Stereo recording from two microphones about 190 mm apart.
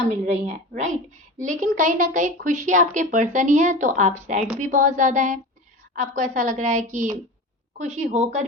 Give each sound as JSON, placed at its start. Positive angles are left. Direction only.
{"t": 0.1, "sound": "a woman's voice", "side_deg": -35}